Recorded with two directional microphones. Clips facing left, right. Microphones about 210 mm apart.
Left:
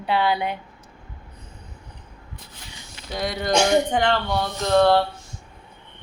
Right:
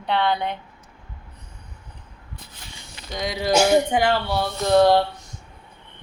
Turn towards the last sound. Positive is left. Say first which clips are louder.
# right 1 dB
turn(degrees=-15)  # may be behind; listen again after turning